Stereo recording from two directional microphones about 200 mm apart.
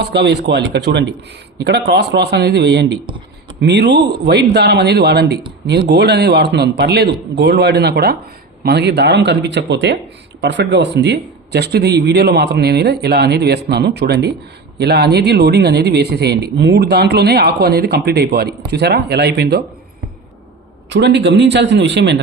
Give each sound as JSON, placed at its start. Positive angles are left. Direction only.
{"t": 0.0, "sound": "speech", "side_deg": -55}
{"t": 20.9, "sound": "speech", "side_deg": -60}